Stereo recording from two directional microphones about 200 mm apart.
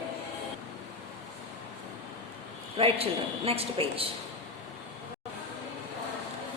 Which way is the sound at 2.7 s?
30° right (ahead or behind).